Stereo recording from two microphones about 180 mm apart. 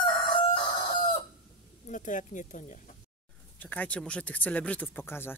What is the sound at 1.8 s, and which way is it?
Speech, 45° left (ahead or behind).